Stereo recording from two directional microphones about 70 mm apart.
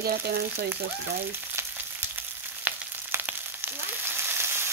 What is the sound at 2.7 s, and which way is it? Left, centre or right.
Frying, right.